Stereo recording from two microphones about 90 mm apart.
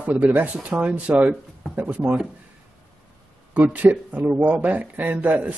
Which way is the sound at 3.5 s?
20° right (ahead or behind).